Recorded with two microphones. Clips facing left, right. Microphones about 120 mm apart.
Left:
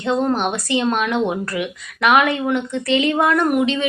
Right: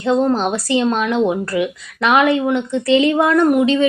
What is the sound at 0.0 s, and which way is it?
Speech, 30° right (ahead or behind).